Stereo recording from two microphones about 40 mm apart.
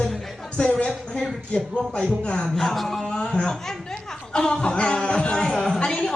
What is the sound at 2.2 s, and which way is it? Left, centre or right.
Speech, left.